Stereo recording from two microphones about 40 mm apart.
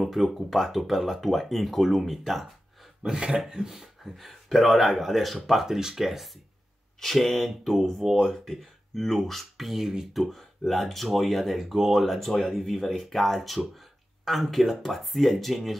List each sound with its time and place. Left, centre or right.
0.0 s speech: centre
3.2 s speech: centre
7.0 s speech: centre
10.1 s speech: centre